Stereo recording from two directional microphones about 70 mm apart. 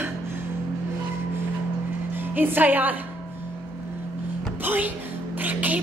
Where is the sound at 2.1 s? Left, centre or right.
Right.